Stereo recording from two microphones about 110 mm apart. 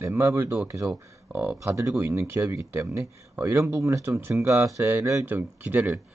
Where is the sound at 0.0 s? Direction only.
25° right (ahead or behind).